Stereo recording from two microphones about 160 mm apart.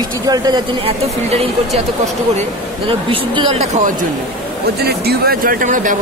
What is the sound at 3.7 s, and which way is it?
Speech, 55° right (ahead or behind).